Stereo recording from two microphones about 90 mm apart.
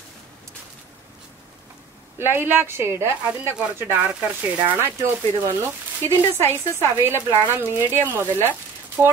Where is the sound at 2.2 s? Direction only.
25° right (ahead or behind).